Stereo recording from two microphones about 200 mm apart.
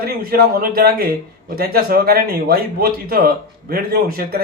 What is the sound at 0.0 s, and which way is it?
Speech, 50° right (ahead or behind).